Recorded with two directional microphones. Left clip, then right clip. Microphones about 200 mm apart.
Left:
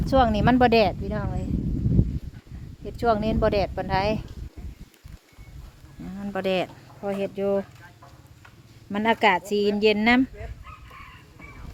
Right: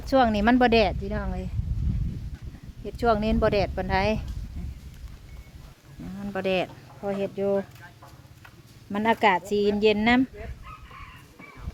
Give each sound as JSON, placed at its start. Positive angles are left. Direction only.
{"t": 0.0, "sound": "speech", "side_deg": 10}
{"t": 2.8, "sound": "speech", "side_deg": 5}
{"t": 6.1, "sound": "speech", "side_deg": 25}
{"t": 8.9, "sound": "speech", "side_deg": 15}